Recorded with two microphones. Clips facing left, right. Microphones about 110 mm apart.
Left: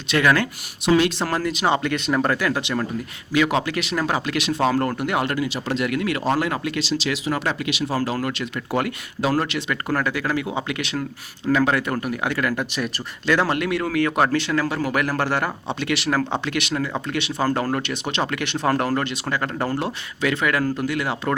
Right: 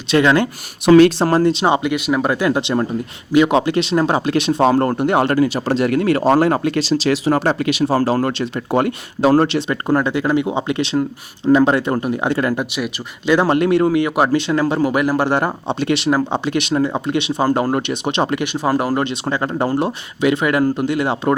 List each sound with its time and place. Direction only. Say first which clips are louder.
0.1 s a man's voice: right 5 dB; 25° right (ahead or behind)
0.9 s speech: right 9 dB; 55° right (ahead or behind)
1.2 s a man's voice: right 8 dB; 30° right (ahead or behind)
12.7 s speech: right 3 dB; 5° right (ahead or behind)
13.3 s a man's voice: right 7 dB; 20° right (ahead or behind)
18.4 s a man's voice: right 3 dB; 10° right (ahead or behind)